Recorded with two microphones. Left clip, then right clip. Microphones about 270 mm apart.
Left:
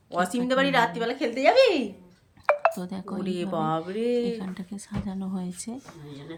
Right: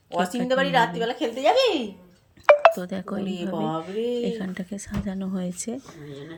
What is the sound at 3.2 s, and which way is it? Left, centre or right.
Speech, centre.